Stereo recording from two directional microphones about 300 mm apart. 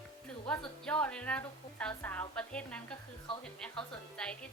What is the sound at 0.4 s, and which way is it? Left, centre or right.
A woman's voice, centre.